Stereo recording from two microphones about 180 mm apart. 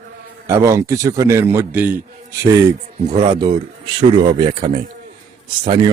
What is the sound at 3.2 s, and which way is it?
Speech, 25° right (ahead or behind).